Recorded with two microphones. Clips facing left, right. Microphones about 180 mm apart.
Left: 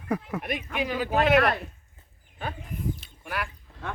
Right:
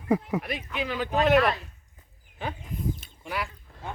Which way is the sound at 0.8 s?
10° left (ahead or behind).